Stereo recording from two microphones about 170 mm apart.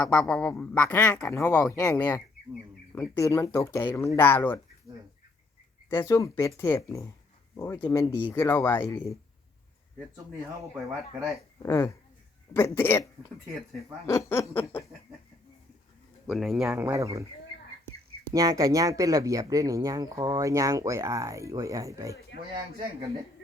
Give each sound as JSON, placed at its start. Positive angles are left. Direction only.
{"t": 0.0, "sound": "speech", "side_deg": 5}
{"t": 5.9, "sound": "speech", "side_deg": 15}
{"t": 11.6, "sound": "speech", "side_deg": 15}
{"t": 14.3, "sound": "speech", "side_deg": 15}
{"t": 16.2, "sound": "speech", "side_deg": 0}
{"t": 18.3, "sound": "speech", "side_deg": -20}